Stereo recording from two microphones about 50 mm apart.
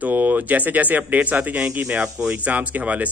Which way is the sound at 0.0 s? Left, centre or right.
Right.